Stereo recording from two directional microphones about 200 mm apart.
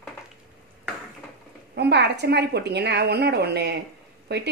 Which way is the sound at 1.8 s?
55° right (ahead or behind).